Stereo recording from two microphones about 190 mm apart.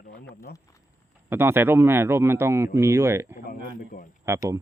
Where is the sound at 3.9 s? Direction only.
50° left (ahead or behind).